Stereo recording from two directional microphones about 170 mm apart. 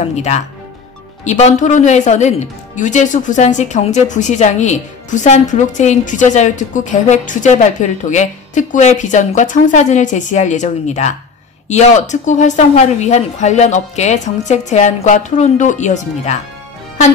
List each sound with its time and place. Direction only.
0.0 s speech: 40° left (ahead or behind)